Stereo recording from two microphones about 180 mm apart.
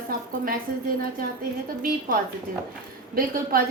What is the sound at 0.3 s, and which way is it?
Speech, 55° right (ahead or behind).